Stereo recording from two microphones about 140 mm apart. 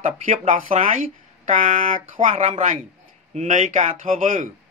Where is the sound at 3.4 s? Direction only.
60° right (ahead or behind).